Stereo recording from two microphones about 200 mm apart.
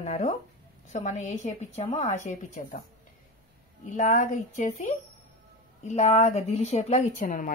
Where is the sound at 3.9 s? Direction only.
40° left (ahead or behind).